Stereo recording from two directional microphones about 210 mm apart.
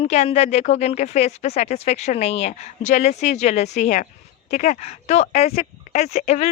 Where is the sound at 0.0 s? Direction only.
30° left (ahead or behind).